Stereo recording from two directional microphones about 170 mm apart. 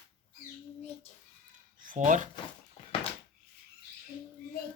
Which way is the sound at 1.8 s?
50° right (ahead or behind).